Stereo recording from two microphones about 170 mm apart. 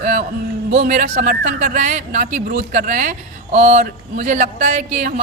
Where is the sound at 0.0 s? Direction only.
45° right (ahead or behind).